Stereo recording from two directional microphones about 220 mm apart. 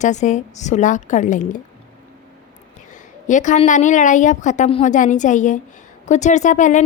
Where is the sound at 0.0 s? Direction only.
35° left (ahead or behind).